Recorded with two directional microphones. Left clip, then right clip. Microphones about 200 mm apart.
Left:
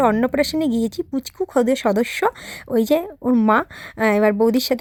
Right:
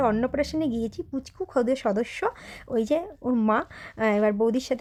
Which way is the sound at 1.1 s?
25° left (ahead or behind).